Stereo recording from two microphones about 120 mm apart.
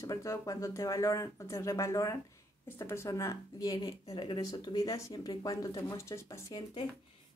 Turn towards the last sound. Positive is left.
turn(degrees=45)  # may be behind; listen again after turning